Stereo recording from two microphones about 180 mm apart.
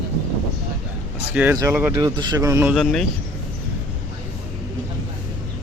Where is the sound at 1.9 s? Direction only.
25° right (ahead or behind).